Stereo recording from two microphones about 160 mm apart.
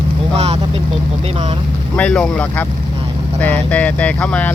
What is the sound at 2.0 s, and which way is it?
Speech, 5° left (ahead or behind).